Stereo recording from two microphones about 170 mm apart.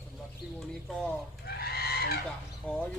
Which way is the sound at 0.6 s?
Centre (ahead or behind).